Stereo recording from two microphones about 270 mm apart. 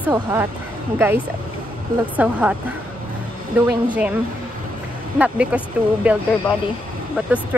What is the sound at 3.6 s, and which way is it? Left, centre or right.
Speech, centre.